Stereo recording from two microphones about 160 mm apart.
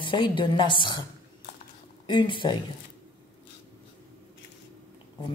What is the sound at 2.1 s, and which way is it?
Speech, 30° left (ahead or behind).